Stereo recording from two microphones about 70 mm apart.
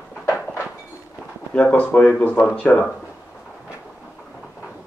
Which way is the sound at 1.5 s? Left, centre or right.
Left.